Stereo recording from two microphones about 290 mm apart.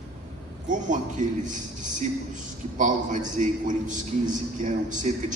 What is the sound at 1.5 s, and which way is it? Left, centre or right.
A man's voice, right.